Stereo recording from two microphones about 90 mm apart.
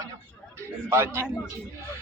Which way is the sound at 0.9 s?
30° right (ahead or behind).